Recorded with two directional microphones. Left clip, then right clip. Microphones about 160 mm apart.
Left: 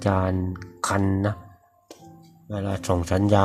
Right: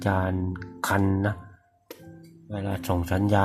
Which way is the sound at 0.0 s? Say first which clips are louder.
Left 3 dB; 15° left (ahead or behind).